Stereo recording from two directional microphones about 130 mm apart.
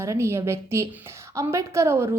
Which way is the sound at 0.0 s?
20° right (ahead or behind).